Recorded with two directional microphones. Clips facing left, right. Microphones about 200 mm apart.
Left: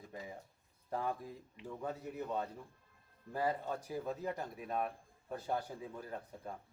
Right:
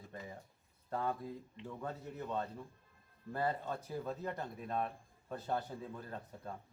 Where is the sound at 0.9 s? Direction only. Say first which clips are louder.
Right 1 dB; 10° left (ahead or behind).